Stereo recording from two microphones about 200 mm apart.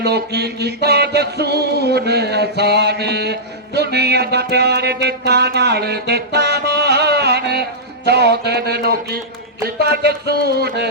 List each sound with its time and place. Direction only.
0.0 s speech: 55° right (ahead or behind)
8.0 s music: 55° right (ahead or behind)